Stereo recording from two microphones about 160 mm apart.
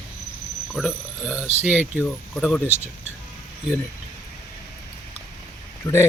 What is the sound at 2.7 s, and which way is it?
Speech, 45° right (ahead or behind).